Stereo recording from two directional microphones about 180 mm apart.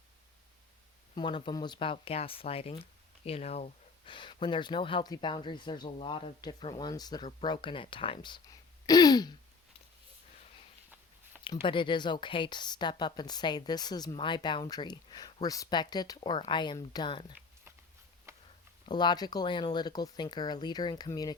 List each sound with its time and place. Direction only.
1.1 s speech: 30° left (ahead or behind)
11.6 s speech: 25° left (ahead or behind)
18.3 s pig: 15° right (ahead or behind)
18.9 s speech: 25° left (ahead or behind)